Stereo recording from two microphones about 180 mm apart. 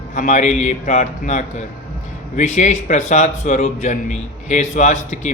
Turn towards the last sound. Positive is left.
turn(degrees=40)  # may be behind; listen again after turning